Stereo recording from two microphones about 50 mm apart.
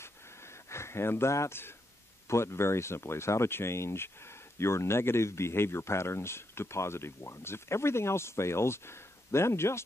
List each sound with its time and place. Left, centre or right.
0.7 s speech: left